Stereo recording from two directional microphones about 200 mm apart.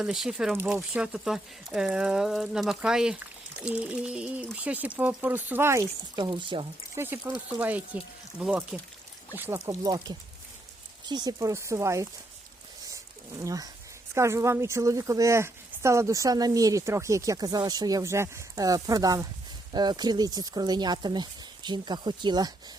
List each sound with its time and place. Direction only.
0.0 s speech: 5° right (ahead or behind); by 6.7 s 25° right (ahead or behind)
6.9 s speech: 10° right (ahead or behind)
12.9 s a sound: 15° right (ahead or behind)
14.1 s speech: 15° right (ahead or behind)